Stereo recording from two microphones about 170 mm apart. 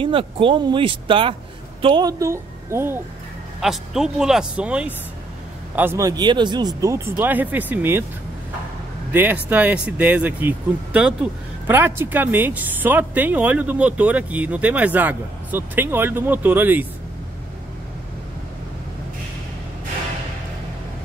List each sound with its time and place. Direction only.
0.0 s a woman's voice: 30° right (ahead or behind); by 3.0 s 15° right (ahead or behind)
3.6 s speech: 5° right (ahead or behind)
9.1 s speech: 10° right (ahead or behind)